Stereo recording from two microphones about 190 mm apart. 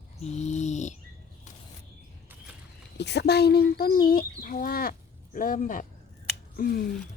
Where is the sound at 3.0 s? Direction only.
60° left (ahead or behind).